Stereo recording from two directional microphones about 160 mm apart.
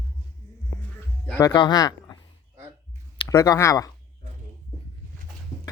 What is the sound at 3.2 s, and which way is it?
Speech, 25° left (ahead or behind).